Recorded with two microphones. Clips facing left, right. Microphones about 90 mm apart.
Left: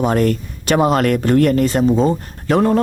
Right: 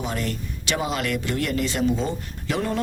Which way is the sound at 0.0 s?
50° left (ahead or behind).